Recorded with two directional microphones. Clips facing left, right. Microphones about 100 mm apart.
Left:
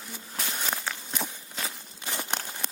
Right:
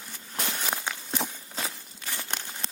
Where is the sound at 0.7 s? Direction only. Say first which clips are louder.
Left 1 dB; 10° right (ahead or behind).